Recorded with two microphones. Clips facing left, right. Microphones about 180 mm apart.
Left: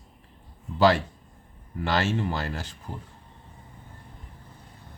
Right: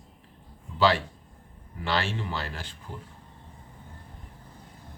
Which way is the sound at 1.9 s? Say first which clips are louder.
Left 4 dB; 45° left (ahead or behind).